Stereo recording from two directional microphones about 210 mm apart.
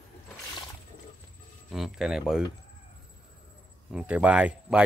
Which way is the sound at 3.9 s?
5° right (ahead or behind).